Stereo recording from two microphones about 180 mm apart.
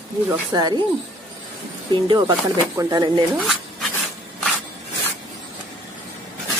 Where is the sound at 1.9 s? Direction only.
25° right (ahead or behind).